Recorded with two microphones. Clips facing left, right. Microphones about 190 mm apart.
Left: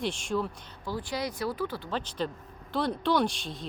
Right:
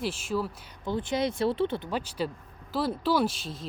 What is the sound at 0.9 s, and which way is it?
Speech, 20° right (ahead or behind).